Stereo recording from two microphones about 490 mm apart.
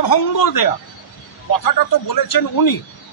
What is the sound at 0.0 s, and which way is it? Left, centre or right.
A man's voice, left.